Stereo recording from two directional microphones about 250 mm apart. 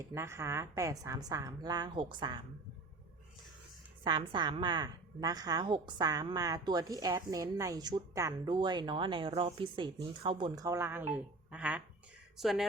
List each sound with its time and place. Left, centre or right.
0.1 s a woman's voice: centre
4.0 s a woman's voice: centre